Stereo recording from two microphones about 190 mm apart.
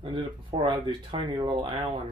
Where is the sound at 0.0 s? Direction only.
30° right (ahead or behind).